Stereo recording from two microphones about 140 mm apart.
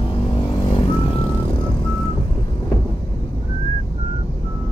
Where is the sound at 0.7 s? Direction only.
35° left (ahead or behind).